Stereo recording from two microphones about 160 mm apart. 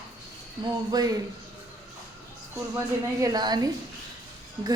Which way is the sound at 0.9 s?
20° right (ahead or behind).